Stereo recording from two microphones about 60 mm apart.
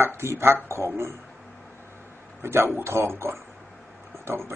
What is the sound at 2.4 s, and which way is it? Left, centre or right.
Speech, right.